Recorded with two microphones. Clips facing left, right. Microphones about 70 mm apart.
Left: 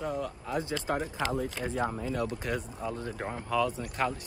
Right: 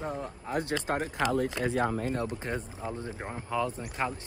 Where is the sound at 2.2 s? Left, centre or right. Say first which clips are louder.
Left 1 dB; right.